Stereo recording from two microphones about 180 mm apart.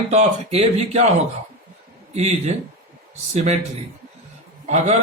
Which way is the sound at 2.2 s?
35° right (ahead or behind).